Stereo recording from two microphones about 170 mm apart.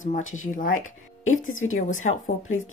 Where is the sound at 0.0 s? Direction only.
50° left (ahead or behind).